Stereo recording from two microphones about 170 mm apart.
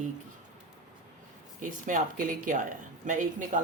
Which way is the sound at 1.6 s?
50° right (ahead or behind).